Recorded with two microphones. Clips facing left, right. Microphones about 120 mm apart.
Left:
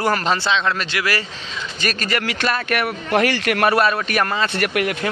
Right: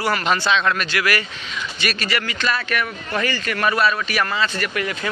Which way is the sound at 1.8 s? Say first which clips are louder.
Left 2 dB; 40° left (ahead or behind).